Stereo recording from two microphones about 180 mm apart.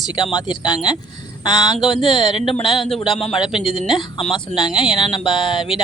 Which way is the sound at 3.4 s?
25° left (ahead or behind).